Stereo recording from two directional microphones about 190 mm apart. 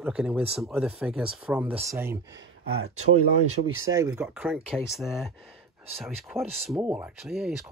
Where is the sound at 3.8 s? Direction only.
15° right (ahead or behind); by 6.4 s centre (ahead or behind).